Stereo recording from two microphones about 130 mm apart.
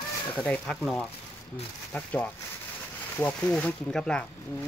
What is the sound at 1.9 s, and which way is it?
Speech, 10° left (ahead or behind).